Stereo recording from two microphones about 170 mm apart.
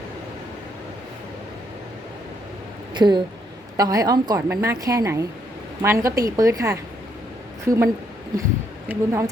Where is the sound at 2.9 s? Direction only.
25° right (ahead or behind).